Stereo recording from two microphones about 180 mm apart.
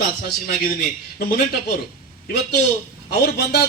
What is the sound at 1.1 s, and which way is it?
Speech, 60° left (ahead or behind).